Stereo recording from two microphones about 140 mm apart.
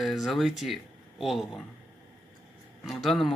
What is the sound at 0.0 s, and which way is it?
Speech, centre (ahead or behind).